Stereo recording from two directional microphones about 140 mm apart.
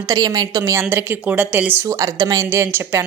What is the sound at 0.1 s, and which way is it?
A woman's voice, 30° right (ahead or behind).